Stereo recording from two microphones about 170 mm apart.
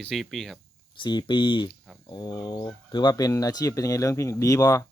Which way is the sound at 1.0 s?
25° left (ahead or behind).